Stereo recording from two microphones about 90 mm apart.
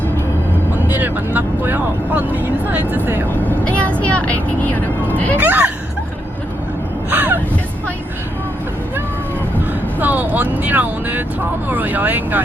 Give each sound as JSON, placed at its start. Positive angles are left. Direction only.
{"t": 0.9, "sound": "speech", "side_deg": -20}
{"t": 3.4, "sound": "speech", "side_deg": 15}
{"t": 5.4, "sound": "speech", "side_deg": -20}
{"t": 7.1, "sound": "vehicle", "side_deg": -20}
{"t": 10.0, "sound": "speech", "side_deg": -20}